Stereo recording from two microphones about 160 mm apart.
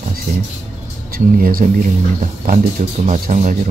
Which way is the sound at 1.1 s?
65° right (ahead or behind).